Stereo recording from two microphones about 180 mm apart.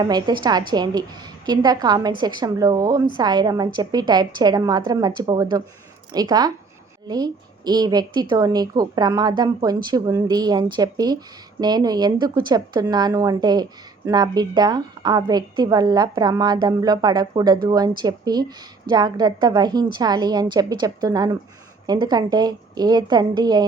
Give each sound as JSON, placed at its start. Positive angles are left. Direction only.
{"t": 0.0, "sound": "a woman's voice", "side_deg": -20}